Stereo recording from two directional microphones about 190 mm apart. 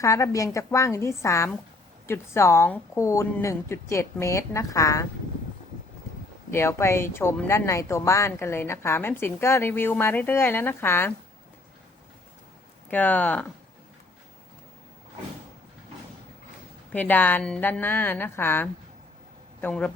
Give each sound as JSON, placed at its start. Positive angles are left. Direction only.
{"t": 0.0, "sound": "speech", "side_deg": 15}
{"t": 6.5, "sound": "speech", "side_deg": 15}
{"t": 12.9, "sound": "speech", "side_deg": 10}
{"t": 16.9, "sound": "a man's voice", "side_deg": 10}